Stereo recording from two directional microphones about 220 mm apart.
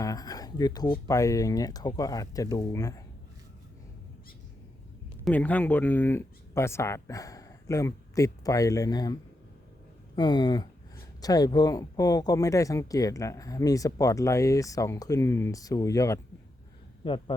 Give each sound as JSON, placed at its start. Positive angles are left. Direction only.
{"t": 0.0, "sound": "a sound", "side_deg": 15}
{"t": 1.0, "sound": "speech", "side_deg": 15}
{"t": 5.2, "sound": "speech", "side_deg": 5}
{"t": 10.2, "sound": "speech", "side_deg": 20}